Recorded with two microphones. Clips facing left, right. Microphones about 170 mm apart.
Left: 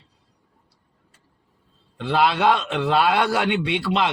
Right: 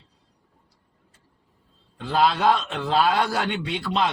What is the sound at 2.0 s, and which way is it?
A man's voice, 70° left (ahead or behind).